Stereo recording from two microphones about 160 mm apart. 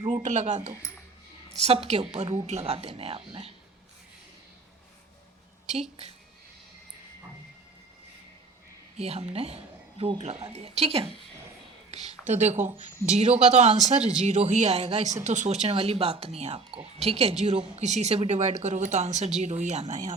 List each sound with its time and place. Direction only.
0.2 s a woman's voice: 50° right (ahead or behind)
1.6 s a woman's voice: 40° right (ahead or behind)
9.0 s a woman's voice: 40° right (ahead or behind)
11.9 s a sound: 45° right (ahead or behind)
12.2 s a woman's voice: 45° right (ahead or behind)
14.0 s speech: 5° right (ahead or behind)
14.3 s a woman's voice: 45° right (ahead or behind)